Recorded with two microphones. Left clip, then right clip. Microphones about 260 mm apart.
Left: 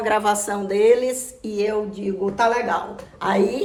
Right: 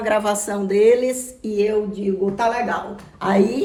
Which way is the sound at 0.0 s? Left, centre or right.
Centre.